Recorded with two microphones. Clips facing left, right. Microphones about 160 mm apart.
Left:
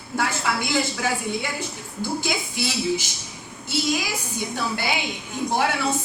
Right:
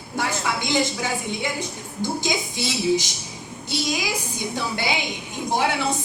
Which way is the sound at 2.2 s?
20° right (ahead or behind).